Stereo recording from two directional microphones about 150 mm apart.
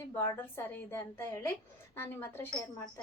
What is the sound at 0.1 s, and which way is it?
A woman's voice, 15° left (ahead or behind).